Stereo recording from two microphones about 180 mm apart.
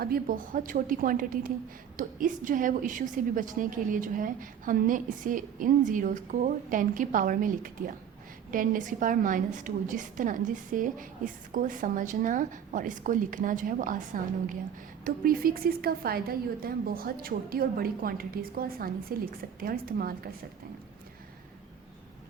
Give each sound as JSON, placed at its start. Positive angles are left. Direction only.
{"t": 0.0, "sound": "a woman's voice", "side_deg": -55}